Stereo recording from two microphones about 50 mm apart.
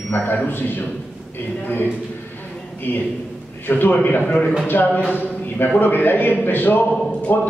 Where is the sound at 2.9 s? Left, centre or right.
Left.